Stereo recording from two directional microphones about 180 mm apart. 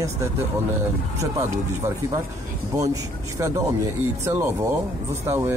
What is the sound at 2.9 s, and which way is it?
Speech, 15° right (ahead or behind).